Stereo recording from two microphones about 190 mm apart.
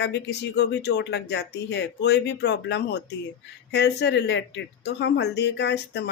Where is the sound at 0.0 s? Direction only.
65° left (ahead or behind).